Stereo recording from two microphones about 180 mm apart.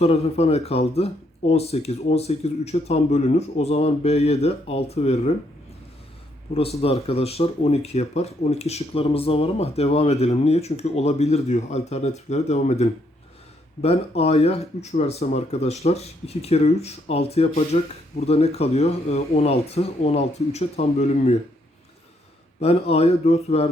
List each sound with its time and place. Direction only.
0.0 s speech: 35° left (ahead or behind)
6.5 s speech: 35° left (ahead or behind)
22.6 s speech: 35° left (ahead or behind)